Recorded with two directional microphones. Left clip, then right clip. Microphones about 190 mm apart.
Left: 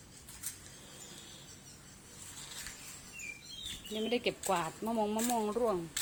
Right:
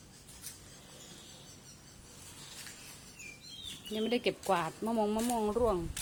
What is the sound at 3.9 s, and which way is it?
Speech, 20° right (ahead or behind).